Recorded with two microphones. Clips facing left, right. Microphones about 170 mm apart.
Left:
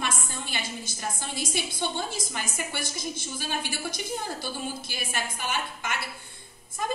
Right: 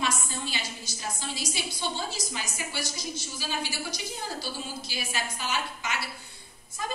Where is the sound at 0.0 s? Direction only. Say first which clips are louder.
Right 2 dB; 55° left (ahead or behind).